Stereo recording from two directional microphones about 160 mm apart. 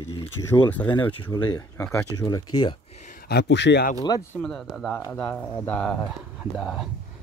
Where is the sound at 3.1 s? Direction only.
75° left (ahead or behind); by 3.9 s 90° left.